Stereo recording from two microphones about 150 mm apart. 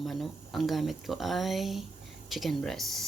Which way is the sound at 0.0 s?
Centre (ahead or behind).